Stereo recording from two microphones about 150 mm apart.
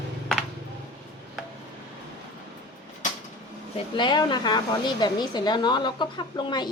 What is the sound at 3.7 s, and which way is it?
A woman's voice, 30° left (ahead or behind).